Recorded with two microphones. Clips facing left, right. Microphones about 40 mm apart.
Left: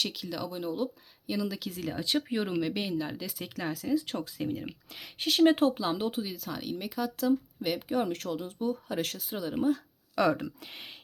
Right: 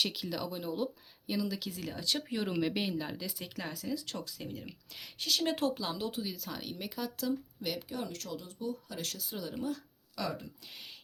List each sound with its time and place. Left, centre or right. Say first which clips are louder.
0.0 s speech: left 1 dB; centre
1.9 s speech: left 6 dB; centre
2.6 s speech: left 2 dB; centre
3.8 s speech: left 10 dB; left; by 7.3 s centre
7.3 s speech: left 8 dB; left
7.9 s speech: left 9 dB; left
9.1 s speech: left 7 dB; left
10.2 s speech: left 11 dB; left
10.7 s speech: left 4 dB; left